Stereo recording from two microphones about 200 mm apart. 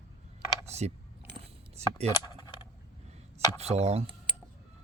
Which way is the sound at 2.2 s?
20° left (ahead or behind).